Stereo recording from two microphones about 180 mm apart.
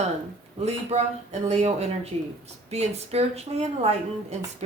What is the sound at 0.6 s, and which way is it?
Speech, 35° right (ahead or behind).